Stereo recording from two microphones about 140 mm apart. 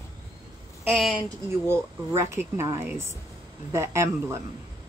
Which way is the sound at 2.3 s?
20° right (ahead or behind).